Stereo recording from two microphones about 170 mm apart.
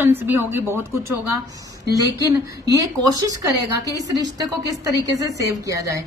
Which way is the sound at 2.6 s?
20° right (ahead or behind).